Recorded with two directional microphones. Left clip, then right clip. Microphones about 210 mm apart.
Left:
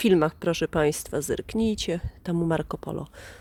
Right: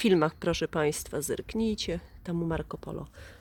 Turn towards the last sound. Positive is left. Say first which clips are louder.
# left 6 dB
turn(degrees=25)  # may be behind; listen again after turning